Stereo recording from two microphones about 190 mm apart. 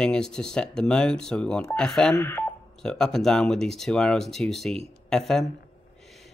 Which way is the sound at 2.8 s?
5° left (ahead or behind).